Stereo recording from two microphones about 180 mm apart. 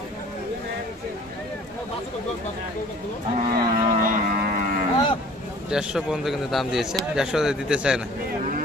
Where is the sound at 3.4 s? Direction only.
50° right (ahead or behind).